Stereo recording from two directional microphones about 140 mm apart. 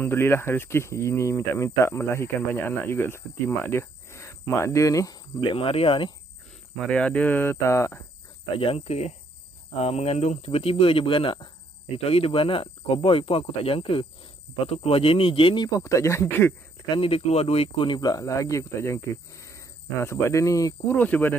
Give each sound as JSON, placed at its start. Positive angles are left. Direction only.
{"t": 0.0, "sound": "speech", "side_deg": 15}
{"t": 6.8, "sound": "speech", "side_deg": 5}
{"t": 8.5, "sound": "speech", "side_deg": 45}
{"t": 16.8, "sound": "speech", "side_deg": 40}
{"t": 21.0, "sound": "speech", "side_deg": 15}